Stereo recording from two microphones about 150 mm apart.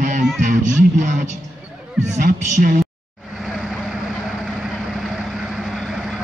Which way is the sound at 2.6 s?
70° right (ahead or behind).